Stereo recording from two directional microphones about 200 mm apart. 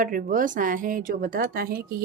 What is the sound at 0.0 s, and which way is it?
A woman's voice, 45° right (ahead or behind).